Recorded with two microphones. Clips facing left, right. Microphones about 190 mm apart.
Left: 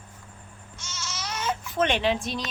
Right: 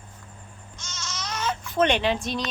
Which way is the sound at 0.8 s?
5° left (ahead or behind).